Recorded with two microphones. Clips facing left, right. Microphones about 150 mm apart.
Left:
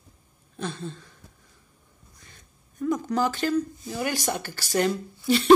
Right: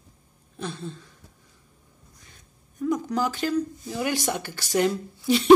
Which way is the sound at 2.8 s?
10° right (ahead or behind).